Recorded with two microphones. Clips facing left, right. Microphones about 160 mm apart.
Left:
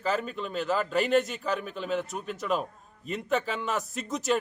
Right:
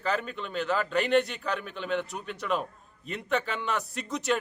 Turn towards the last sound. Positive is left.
turn(degrees=0)  # may be behind; listen again after turning